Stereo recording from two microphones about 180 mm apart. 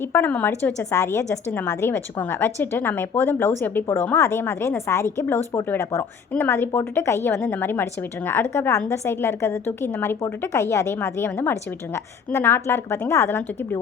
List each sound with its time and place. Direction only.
0.1 s a woman's voice: 10° left (ahead or behind)